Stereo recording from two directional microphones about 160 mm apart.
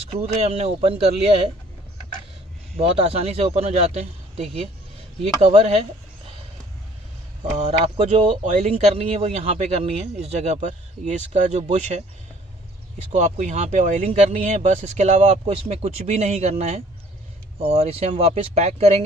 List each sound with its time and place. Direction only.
0.0 s speech: 40° right (ahead or behind)
2.7 s speech: 40° right (ahead or behind)
7.5 s speech: 40° right (ahead or behind)
13.1 s speech: 45° right (ahead or behind)